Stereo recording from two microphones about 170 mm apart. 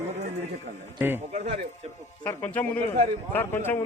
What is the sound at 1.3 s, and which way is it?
Speech, 40° right (ahead or behind).